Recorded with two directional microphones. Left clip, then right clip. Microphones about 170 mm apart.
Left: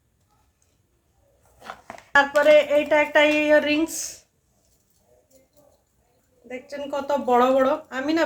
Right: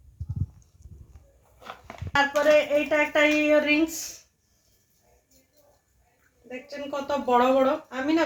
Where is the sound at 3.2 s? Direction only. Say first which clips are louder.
Left 3 dB; 25° left (ahead or behind).